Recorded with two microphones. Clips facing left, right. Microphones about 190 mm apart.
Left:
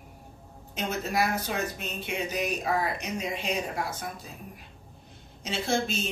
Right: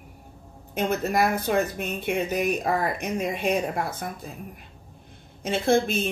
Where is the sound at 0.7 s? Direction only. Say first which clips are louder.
Right 6 dB; 55° right (ahead or behind).